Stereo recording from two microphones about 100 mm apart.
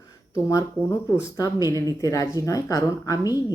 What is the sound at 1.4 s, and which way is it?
Speech, 35° left (ahead or behind).